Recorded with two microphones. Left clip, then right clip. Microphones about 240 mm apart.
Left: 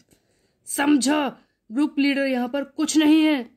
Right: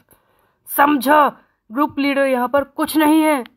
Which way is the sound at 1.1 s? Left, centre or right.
Right.